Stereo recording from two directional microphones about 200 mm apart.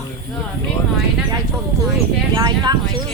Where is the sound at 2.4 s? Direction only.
20° right (ahead or behind).